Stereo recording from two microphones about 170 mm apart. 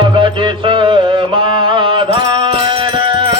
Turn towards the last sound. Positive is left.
turn(degrees=-30)  # may be behind; listen again after turning